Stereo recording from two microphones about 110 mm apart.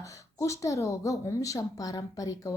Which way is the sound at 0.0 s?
30° left (ahead or behind).